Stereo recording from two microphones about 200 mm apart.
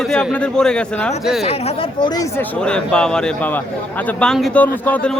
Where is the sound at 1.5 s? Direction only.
30° left (ahead or behind).